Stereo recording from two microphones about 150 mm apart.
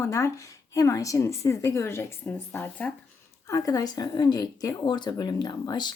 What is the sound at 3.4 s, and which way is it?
Speech, 20° left (ahead or behind).